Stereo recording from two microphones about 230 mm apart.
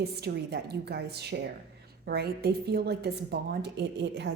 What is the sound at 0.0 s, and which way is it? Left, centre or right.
Speech, right.